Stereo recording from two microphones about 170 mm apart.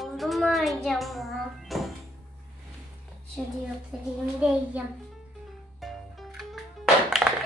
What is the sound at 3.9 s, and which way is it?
Speech, 5° right (ahead or behind).